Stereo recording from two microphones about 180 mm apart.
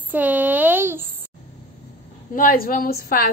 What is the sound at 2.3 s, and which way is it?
Speech, 50° left (ahead or behind).